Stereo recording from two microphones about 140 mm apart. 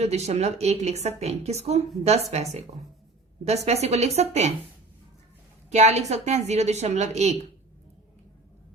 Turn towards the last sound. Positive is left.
turn(degrees=-50)  # may be behind; listen again after turning